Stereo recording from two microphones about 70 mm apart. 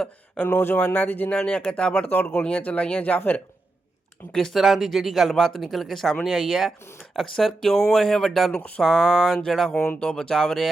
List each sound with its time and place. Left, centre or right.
0.4 s speech: left
1.4 s speech: centre
4.3 s speech: centre
8.5 s a sound: centre
8.8 s speech: centre
9.7 s speech: left
10.0 s speech: centre